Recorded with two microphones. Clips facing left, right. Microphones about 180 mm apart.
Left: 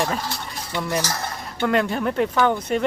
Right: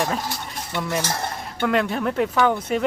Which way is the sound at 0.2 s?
20° right (ahead or behind).